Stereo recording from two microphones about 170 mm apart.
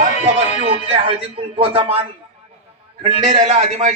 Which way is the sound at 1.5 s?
35° right (ahead or behind).